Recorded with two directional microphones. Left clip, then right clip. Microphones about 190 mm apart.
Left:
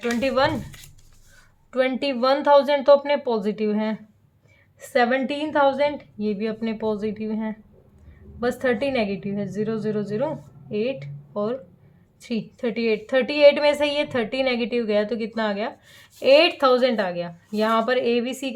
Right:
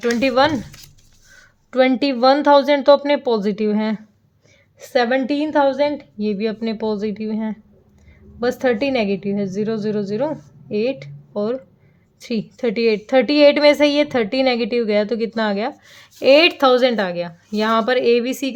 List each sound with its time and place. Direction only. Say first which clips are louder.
0.0 s a woman's voice: right 5 dB; 40° right (ahead or behind)
1.7 s a woman's voice: right 6 dB; 35° right (ahead or behind)